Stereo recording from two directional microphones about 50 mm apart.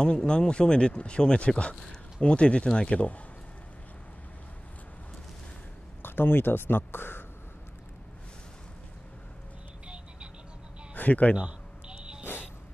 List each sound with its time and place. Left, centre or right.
0.0 s speech: centre
6.0 s speech: left
11.0 s speech: left
11.3 s a sound: right